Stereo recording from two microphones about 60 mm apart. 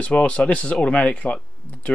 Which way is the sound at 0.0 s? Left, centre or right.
Left.